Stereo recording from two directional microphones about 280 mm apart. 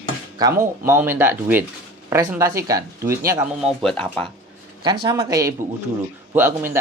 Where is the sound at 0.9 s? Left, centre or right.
Centre.